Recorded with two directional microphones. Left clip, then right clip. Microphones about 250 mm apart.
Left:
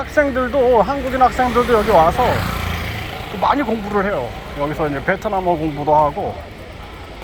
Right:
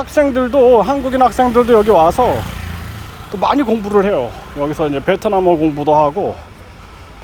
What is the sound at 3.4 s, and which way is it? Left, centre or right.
Speech, right.